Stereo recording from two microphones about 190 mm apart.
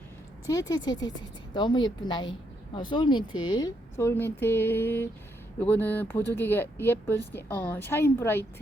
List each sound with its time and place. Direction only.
0.4 s a woman's voice: 20° left (ahead or behind)